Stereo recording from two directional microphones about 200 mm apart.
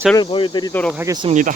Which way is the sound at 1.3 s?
40° right (ahead or behind).